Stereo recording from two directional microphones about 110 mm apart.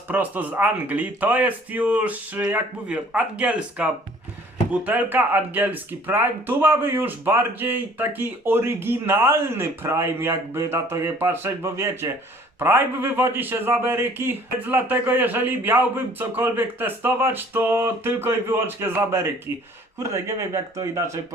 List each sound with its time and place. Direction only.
0.1 s speech: 15° right (ahead or behind)